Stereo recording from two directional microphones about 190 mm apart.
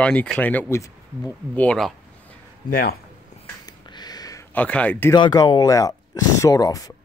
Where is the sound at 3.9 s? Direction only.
20° left (ahead or behind).